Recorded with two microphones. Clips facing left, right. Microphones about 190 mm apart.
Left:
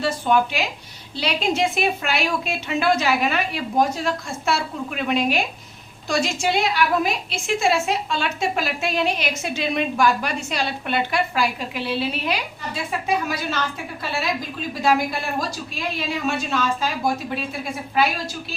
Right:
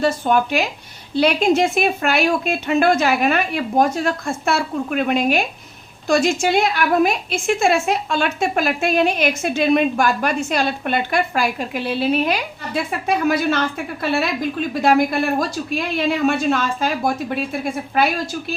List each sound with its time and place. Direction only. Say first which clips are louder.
0.0 s a woman's voice: right 2 dB; 45° right (ahead or behind)
14.7 s speech: right 4 dB; 55° right (ahead or behind)
18.0 s a woman's voice: right 2 dB; 55° right (ahead or behind)